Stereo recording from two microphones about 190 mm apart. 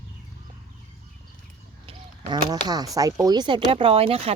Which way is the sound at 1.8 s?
25° right (ahead or behind).